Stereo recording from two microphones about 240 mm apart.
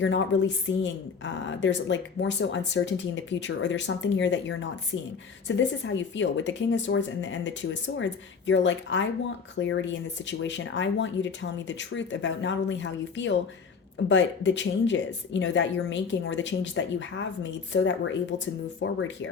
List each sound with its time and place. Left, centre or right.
0.0 s a woman's voice: left